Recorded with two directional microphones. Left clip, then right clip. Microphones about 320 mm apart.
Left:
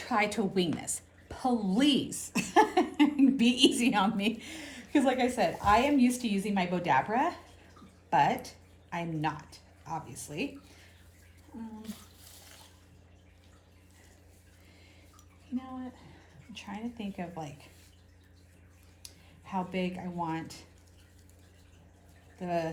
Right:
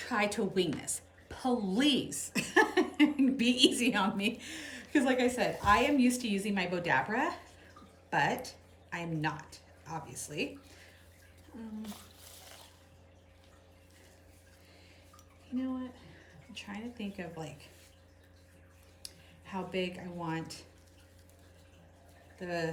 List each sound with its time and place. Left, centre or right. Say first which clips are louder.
0.0 s a woman's voice: left 3 dB; centre
16.6 s a woman's voice: left 2 dB; centre
19.0 s speech: even; centre
22.4 s a woman's voice: left 3 dB; centre